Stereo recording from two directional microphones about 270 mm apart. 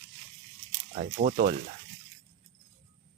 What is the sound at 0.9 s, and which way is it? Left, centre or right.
Speech, right.